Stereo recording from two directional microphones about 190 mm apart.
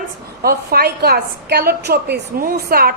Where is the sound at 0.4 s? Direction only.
55° right (ahead or behind).